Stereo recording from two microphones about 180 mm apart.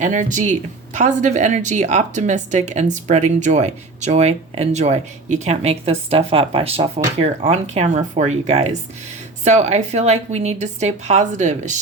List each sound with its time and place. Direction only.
0.0 s speech: 45° right (ahead or behind)